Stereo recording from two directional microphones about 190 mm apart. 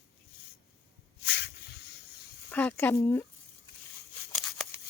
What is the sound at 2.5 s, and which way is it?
Speech, 10° left (ahead or behind).